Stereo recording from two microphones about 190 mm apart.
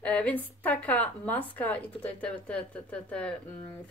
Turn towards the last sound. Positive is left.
turn(degrees=5)  # may be behind; listen again after turning